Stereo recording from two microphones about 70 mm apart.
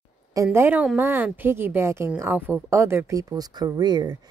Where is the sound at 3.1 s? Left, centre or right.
Right.